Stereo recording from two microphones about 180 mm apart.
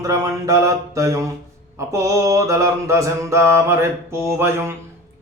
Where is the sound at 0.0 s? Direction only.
15° right (ahead or behind).